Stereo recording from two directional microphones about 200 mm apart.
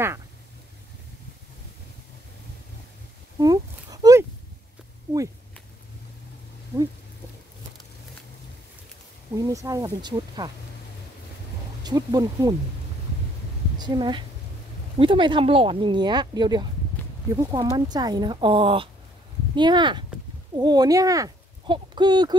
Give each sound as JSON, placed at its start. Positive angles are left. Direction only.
{"t": 3.3, "sound": "a sound", "side_deg": -20}
{"t": 9.4, "sound": "speech", "side_deg": -15}
{"t": 11.8, "sound": "speech", "side_deg": -20}
{"t": 13.7, "sound": "a woman's voice", "side_deg": -20}